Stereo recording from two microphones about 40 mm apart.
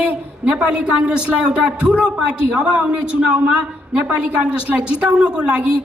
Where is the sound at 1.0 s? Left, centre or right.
Right.